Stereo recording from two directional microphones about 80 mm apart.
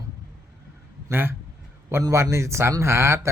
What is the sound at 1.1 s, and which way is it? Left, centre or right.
A man's voice, right.